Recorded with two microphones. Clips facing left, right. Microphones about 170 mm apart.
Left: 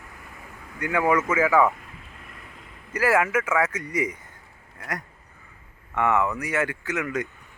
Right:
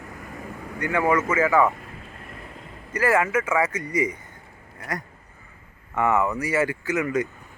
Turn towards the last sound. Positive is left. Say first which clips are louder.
# right 4 dB
turn(degrees=-5)  # may be behind; listen again after turning